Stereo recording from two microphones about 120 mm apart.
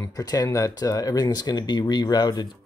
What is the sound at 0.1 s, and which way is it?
Speech, 30° left (ahead or behind).